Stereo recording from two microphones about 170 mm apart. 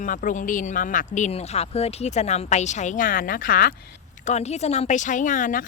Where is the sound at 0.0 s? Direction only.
50° left (ahead or behind).